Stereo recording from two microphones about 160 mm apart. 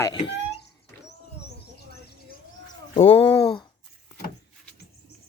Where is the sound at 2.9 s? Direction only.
40° left (ahead or behind).